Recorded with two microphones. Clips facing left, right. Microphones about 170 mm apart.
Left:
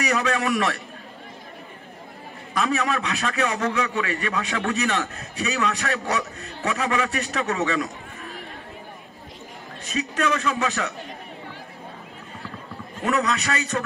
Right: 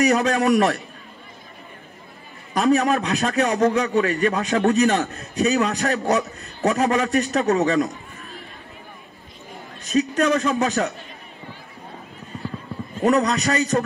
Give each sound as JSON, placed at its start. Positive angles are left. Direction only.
{"t": 0.0, "sound": "a man's voice", "side_deg": -35}
{"t": 2.5, "sound": "a man's voice", "side_deg": -35}
{"t": 9.8, "sound": "a man's voice", "side_deg": -35}
{"t": 13.0, "sound": "a man's voice", "side_deg": -35}